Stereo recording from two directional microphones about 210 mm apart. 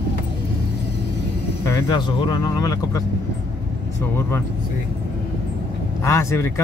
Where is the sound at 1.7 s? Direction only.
20° left (ahead or behind).